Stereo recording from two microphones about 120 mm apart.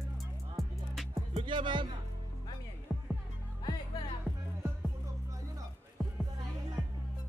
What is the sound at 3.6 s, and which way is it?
Music, 35° left (ahead or behind).